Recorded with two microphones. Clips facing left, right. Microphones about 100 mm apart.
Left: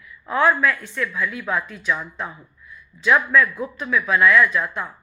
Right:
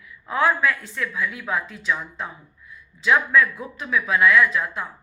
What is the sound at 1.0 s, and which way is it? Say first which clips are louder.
Speech: left 2 dB; 25° right (ahead or behind).